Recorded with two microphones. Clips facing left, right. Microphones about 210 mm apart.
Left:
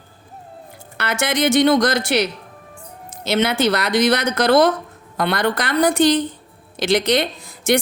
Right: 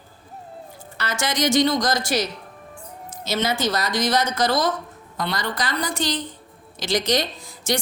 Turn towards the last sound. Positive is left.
turn(degrees=60)  # may be behind; listen again after turning